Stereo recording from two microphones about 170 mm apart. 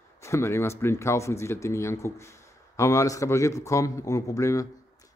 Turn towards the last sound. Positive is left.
turn(degrees=20)  # may be behind; listen again after turning